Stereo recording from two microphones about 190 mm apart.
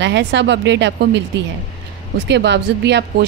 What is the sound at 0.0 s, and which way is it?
Speech, 70° right (ahead or behind).